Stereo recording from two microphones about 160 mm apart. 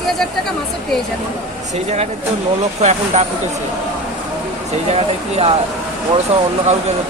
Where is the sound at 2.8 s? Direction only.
45° right (ahead or behind).